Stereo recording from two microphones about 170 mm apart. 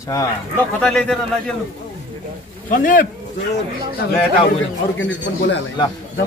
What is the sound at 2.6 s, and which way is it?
Speech, 55° left (ahead or behind).